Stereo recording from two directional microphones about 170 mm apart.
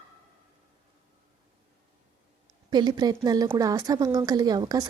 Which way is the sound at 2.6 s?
25° right (ahead or behind).